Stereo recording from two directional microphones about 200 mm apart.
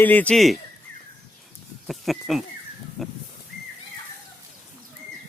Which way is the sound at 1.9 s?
Centre (ahead or behind).